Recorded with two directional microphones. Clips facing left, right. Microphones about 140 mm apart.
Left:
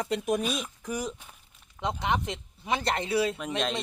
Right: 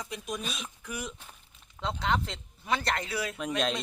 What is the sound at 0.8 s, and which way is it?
Speech, 35° left (ahead or behind).